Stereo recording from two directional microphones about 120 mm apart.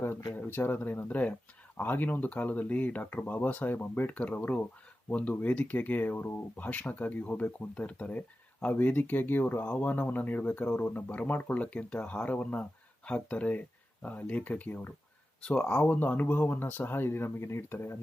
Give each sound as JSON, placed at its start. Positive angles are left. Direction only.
{"t": 0.3, "sound": "speech", "side_deg": 20}